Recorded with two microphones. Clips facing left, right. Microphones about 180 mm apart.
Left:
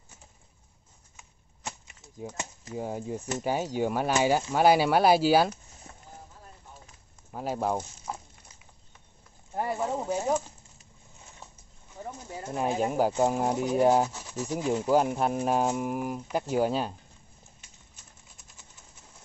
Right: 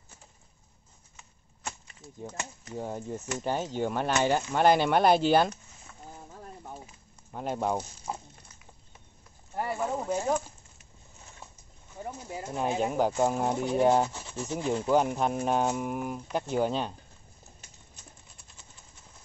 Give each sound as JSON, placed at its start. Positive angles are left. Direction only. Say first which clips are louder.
{"t": 1.1, "sound": "a sound", "louder": "even", "side_deg": 20}
{"t": 2.8, "sound": "speech", "louder": "left 2 dB", "side_deg": 10}
{"t": 5.9, "sound": "vehicle", "louder": "left 3 dB", "side_deg": 40}
{"t": 6.3, "sound": "a sound", "louder": "right 7 dB", "side_deg": -65}
{"t": 7.3, "sound": "speech", "louder": "left 1 dB", "side_deg": 5}
{"t": 9.6, "sound": "speech", "louder": "left 1 dB", "side_deg": 20}
{"t": 9.8, "sound": "speech", "louder": "right 1 dB", "side_deg": 10}
{"t": 12.0, "sound": "a sound", "louder": "right 1 dB", "side_deg": -10}
{"t": 12.4, "sound": "speech", "louder": "left 1 dB", "side_deg": 5}